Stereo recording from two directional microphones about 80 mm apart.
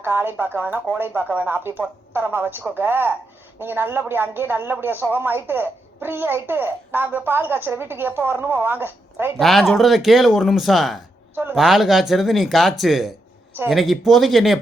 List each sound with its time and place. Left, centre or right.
0.0 s a child's voice: right
9.4 s speech: centre